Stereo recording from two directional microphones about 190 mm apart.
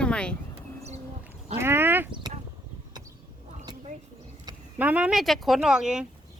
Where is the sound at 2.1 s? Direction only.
25° right (ahead or behind).